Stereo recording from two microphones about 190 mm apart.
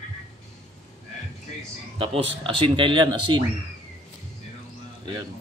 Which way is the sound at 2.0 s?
30° right (ahead or behind).